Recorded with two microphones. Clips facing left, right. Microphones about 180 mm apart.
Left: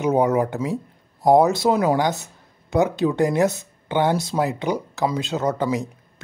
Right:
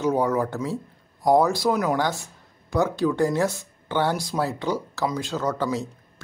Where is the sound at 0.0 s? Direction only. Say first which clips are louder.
Left 3 dB; 20° left (ahead or behind).